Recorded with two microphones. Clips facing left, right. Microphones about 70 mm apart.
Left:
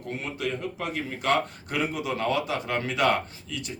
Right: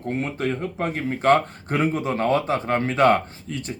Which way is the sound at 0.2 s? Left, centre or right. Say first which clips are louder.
Right 4 dB; right.